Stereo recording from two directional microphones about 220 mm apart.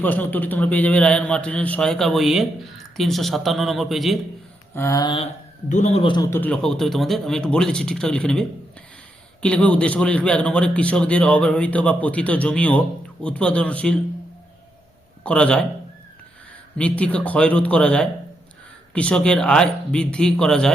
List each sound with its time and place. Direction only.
0.0 s a man's voice: 10° left (ahead or behind)
4.7 s speech: 15° left (ahead or behind)
6.3 s a man's voice: 5° left (ahead or behind)
15.2 s a man's voice: 5° left (ahead or behind)
16.7 s a man's voice: 5° left (ahead or behind)